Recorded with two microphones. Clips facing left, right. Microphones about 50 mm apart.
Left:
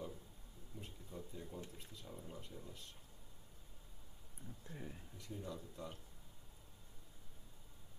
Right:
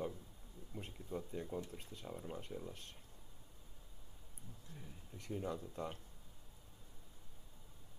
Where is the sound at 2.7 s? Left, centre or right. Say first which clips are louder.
Right 3 dB; right.